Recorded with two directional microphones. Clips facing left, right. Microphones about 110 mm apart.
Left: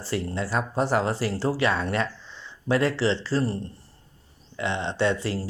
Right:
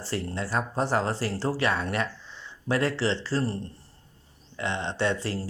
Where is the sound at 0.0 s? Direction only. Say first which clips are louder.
Left 3 dB; 20° left (ahead or behind).